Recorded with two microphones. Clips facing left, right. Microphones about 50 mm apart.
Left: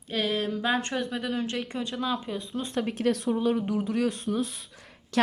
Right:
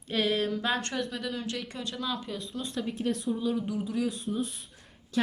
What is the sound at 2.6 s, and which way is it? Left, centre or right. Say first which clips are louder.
Speech: left 5 dB; left.